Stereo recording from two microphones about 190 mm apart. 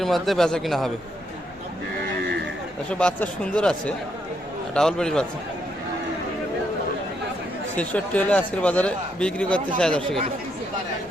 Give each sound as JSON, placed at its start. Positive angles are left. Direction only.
{"t": 0.0, "sound": "speech", "side_deg": 0}
{"t": 2.9, "sound": "speech", "side_deg": 5}
{"t": 7.8, "sound": "speech", "side_deg": 5}